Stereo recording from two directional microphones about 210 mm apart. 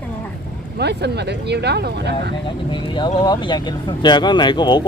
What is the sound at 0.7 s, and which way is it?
Speech, 55° right (ahead or behind).